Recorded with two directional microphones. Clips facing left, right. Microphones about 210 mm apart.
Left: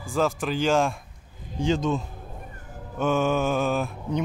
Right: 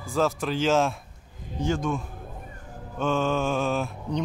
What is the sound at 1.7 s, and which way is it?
Speech, 20° left (ahead or behind).